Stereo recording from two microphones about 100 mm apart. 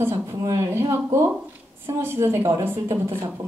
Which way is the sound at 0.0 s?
25° right (ahead or behind).